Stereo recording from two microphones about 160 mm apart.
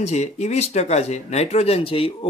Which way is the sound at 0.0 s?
45° left (ahead or behind).